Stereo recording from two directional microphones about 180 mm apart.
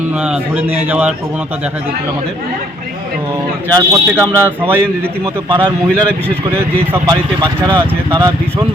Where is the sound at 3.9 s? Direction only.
15° right (ahead or behind).